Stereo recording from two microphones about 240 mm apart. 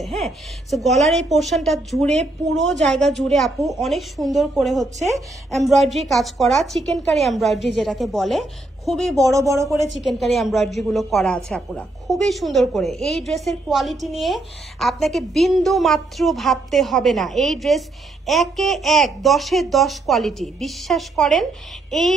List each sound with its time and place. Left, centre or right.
0.0 s a woman's voice: centre
2.4 s a woman's voice: right
2.7 s a woman's voice: centre
9.1 s speech: centre
9.9 s a woman's voice: centre